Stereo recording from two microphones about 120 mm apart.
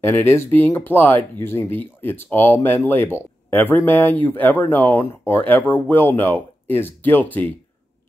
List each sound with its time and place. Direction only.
0.0 s speech: 20° left (ahead or behind)